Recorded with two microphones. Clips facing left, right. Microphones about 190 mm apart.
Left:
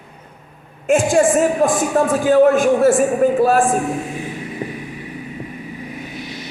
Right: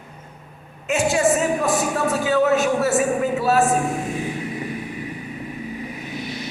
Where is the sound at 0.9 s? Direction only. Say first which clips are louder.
Left 5 dB; 50° left (ahead or behind).